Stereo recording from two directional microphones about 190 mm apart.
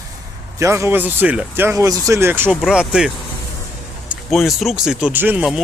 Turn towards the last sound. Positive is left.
turn(degrees=-5)  # may be behind; listen again after turning